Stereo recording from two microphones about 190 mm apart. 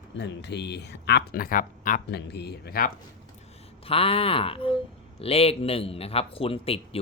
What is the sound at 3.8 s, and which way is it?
A man's voice, 30° left (ahead or behind).